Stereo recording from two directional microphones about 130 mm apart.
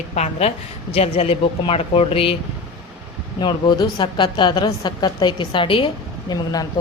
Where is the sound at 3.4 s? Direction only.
35° left (ahead or behind).